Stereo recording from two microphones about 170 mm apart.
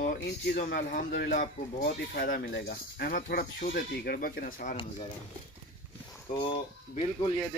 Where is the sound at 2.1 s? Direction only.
65° left (ahead or behind).